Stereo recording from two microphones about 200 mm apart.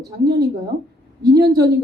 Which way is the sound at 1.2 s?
15° right (ahead or behind).